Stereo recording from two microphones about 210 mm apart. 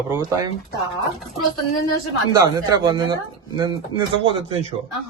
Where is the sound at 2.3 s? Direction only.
20° right (ahead or behind).